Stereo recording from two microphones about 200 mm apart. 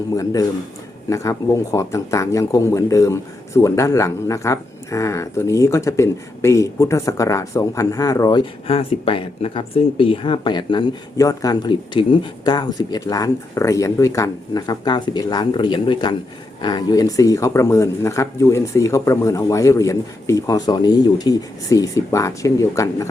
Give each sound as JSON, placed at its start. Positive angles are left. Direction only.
{"t": 1.1, "sound": "speech", "side_deg": 15}